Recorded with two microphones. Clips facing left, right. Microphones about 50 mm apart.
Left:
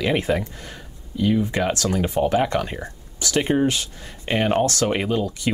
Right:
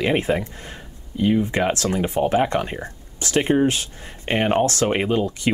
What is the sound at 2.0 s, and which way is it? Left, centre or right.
Speech, right.